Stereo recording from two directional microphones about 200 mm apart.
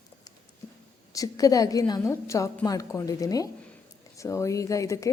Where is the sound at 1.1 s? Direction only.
15° left (ahead or behind).